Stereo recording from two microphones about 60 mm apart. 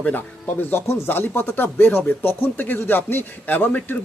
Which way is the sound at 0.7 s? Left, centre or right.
Left.